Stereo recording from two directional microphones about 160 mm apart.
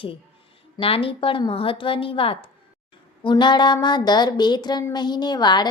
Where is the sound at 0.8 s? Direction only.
35° left (ahead or behind).